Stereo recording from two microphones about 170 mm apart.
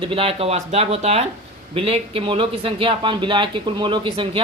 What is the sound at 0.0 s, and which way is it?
A man's voice, 30° right (ahead or behind).